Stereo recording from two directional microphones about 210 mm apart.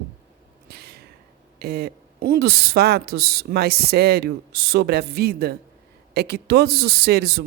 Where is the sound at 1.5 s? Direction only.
50° right (ahead or behind).